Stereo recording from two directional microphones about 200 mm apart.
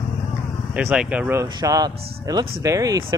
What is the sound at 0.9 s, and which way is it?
Speech, 5° right (ahead or behind).